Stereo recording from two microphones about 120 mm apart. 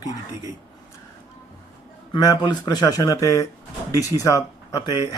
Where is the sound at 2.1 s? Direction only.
35° left (ahead or behind).